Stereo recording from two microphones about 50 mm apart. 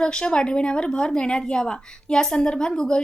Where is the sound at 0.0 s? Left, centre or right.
Centre.